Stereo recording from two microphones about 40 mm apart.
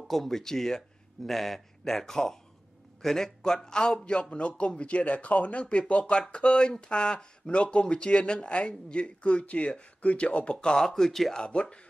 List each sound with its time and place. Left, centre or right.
0.1 s a man's voice: centre
4.0 s a man's voice: left
6.4 s a man's voice: left
10.8 s a man's voice: centre
11.3 s a man's voice: left